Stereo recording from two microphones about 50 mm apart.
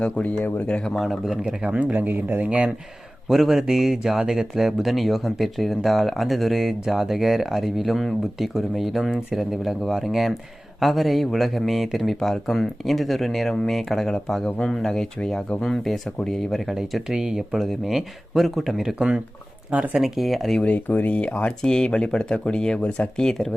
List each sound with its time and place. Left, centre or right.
0.0 s speech: left
0.9 s speech: centre
1.5 s speech: right
2.0 s speech: right
3.2 s speech: centre
14.4 s speech: centre
18.9 s speech: centre
19.7 s speech: right
20.0 s speech: centre
20.6 s speech: left
21.6 s speech: centre